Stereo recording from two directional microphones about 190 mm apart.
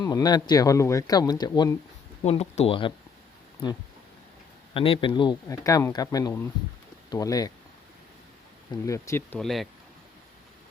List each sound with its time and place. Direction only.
0.0 s speech: 20° left (ahead or behind)
2.2 s speech: 35° left (ahead or behind)
4.7 s speech: 30° left (ahead or behind)
8.7 s speech: 15° left (ahead or behind)
9.4 s speech: centre (ahead or behind)